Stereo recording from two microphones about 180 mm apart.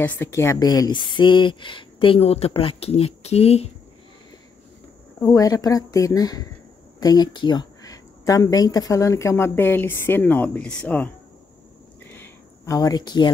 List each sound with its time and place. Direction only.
0.0 s a woman's voice: 15° left (ahead or behind); by 3.7 s 35° left (ahead or behind)
5.2 s a woman's voice: 20° left (ahead or behind)
12.0 s a sound: 10° left (ahead or behind)